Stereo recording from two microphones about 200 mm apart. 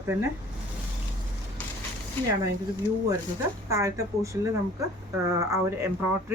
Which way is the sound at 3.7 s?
15° right (ahead or behind).